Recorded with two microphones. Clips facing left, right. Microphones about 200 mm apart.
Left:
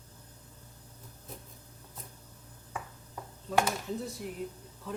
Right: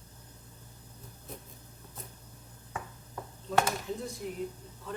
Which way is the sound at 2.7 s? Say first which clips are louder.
Even; 10° left (ahead or behind).